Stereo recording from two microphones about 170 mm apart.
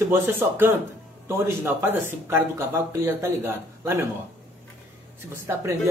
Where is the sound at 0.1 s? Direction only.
15° right (ahead or behind).